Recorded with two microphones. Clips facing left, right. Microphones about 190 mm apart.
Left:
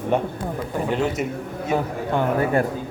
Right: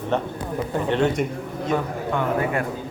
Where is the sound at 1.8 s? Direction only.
30° left (ahead or behind).